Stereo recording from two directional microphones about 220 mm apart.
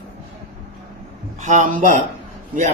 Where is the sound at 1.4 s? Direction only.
35° right (ahead or behind).